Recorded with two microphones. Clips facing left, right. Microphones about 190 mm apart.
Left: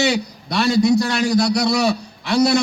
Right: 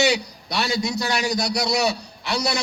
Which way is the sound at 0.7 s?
55° left (ahead or behind).